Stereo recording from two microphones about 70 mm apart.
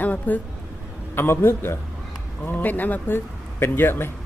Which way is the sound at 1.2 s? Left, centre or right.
Left.